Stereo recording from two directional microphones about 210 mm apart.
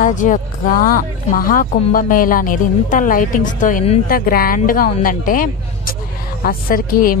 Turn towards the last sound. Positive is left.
turn(degrees=45)  # may be behind; listen again after turning